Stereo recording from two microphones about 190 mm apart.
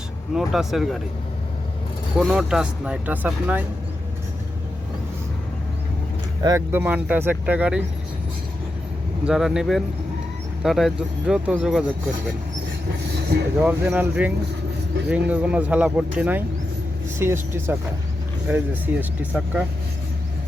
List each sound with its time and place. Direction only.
0.3 s speech: centre (ahead or behind)
2.1 s speech: centre (ahead or behind)
6.4 s speech: 15° right (ahead or behind)
9.2 s speech: 5° right (ahead or behind)
13.6 s speech: 10° right (ahead or behind)